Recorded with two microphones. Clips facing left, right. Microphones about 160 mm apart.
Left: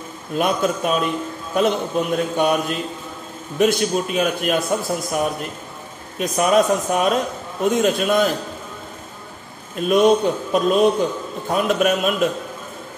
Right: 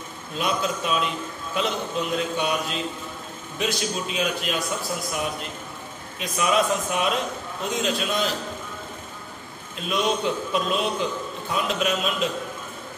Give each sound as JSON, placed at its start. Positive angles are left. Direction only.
{"t": 0.4, "sound": "a man's voice", "side_deg": 50}
{"t": 9.8, "sound": "a man's voice", "side_deg": 50}